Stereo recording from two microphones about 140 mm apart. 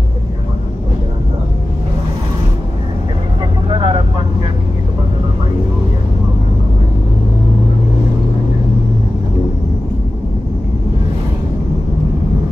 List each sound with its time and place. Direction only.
3.6 s vehicle: 35° right (ahead or behind)